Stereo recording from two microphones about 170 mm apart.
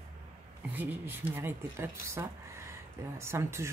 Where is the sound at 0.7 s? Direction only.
10° right (ahead or behind).